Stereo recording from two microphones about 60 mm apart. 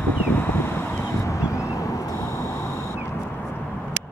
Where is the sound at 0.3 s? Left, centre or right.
Left.